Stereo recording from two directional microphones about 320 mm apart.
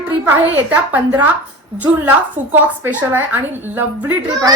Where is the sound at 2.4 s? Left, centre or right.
Centre.